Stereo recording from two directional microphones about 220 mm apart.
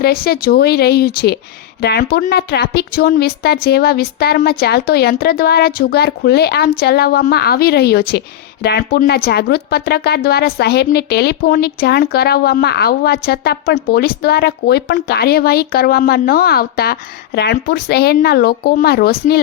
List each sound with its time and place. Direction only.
0.0 s a woman's voice: 45° left (ahead or behind)